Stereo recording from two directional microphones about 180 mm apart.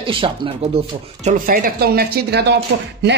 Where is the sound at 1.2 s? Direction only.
50° right (ahead or behind); by 3.2 s 65° right (ahead or behind).